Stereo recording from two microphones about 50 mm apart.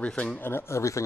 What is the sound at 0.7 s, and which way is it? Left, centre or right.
Speech, left.